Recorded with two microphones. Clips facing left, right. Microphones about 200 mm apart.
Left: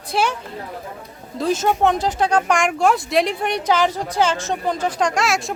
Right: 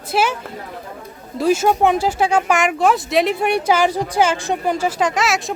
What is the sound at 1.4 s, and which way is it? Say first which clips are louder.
Speech: right 3 dB; 10° right (ahead or behind).